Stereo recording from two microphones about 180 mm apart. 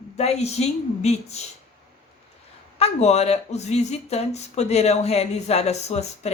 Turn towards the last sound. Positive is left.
turn(degrees=35)  # may be behind; listen again after turning